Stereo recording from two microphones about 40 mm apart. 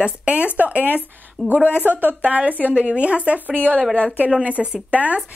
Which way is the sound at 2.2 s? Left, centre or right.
Right.